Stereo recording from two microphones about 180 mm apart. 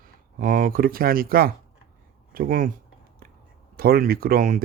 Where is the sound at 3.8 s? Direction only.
55° right (ahead or behind).